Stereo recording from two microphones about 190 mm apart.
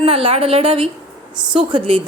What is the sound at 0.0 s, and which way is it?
Speech, 30° right (ahead or behind).